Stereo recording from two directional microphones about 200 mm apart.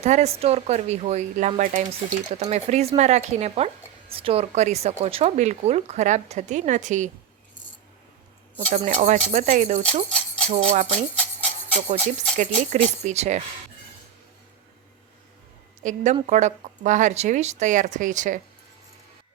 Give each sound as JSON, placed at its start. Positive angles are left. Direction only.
{"t": 0.0, "sound": "speech", "side_deg": -35}
{"t": 8.5, "sound": "speech", "side_deg": -35}
{"t": 10.1, "sound": "jingle bell", "side_deg": 5}
{"t": 10.7, "sound": "speech", "side_deg": -30}
{"t": 12.4, "sound": "speech", "side_deg": -35}
{"t": 15.8, "sound": "speech", "side_deg": -40}